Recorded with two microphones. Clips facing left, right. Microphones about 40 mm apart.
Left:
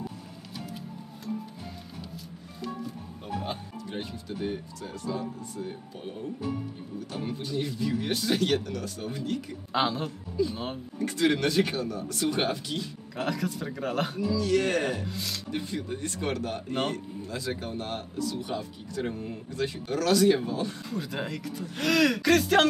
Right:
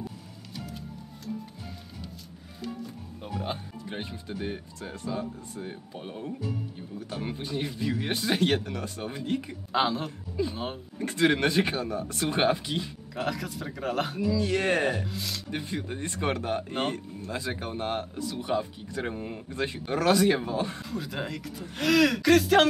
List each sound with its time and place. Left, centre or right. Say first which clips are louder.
2.6 s music: left 1 dB; centre
3.4 s speech: right 1 dB; centre
9.7 s speech: right 1 dB; centre
11.0 s speech: right 1 dB; right
13.1 s speech: left 1 dB; centre
14.3 s speech: left 1 dB; right
15.0 s speech: even; centre
15.5 s speech: left 1 dB; right
16.6 s speech: even; centre
16.9 s speech: even; right
20.9 s speech: left 1 dB; centre